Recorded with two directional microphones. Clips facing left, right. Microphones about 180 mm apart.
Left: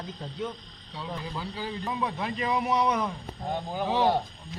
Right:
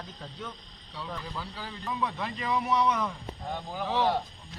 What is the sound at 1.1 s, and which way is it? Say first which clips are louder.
Speech: left 4 dB; 20° left (ahead or behind).